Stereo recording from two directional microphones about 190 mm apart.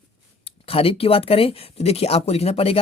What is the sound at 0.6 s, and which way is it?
Speech, 30° left (ahead or behind).